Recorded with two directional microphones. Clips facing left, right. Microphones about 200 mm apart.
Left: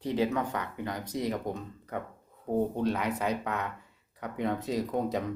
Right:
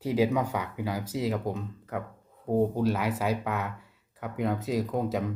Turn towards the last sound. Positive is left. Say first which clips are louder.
# right 1 dB
turn(degrees=0)  # may be behind; listen again after turning